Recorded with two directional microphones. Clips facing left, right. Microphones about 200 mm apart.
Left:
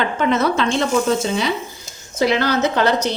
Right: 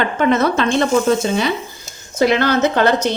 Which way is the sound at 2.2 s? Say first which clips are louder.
Right 3 dB; 55° right (ahead or behind).